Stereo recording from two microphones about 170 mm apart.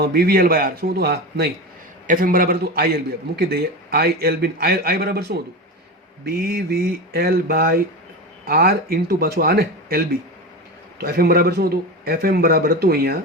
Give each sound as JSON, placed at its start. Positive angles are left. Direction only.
{"t": 0.0, "sound": "a man's voice", "side_deg": -65}
{"t": 2.0, "sound": "a man's voice", "side_deg": -50}